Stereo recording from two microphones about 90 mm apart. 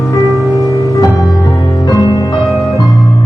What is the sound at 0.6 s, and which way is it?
Music, 40° left (ahead or behind).